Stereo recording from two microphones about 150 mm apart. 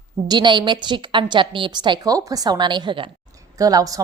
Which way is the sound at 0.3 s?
30° right (ahead or behind).